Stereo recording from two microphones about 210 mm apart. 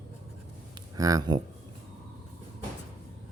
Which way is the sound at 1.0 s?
15° right (ahead or behind).